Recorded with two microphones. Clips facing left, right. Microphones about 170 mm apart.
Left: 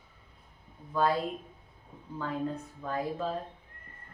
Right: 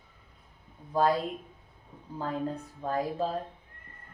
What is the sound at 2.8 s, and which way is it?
Speech, 35° right (ahead or behind).